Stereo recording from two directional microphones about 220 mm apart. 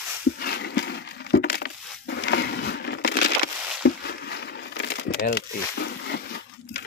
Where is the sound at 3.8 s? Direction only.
50° left (ahead or behind).